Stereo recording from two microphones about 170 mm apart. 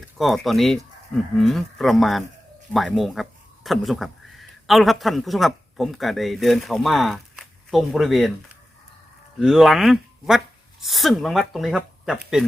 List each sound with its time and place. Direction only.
0.2 s speech: centre (ahead or behind)
9.4 s speech: centre (ahead or behind)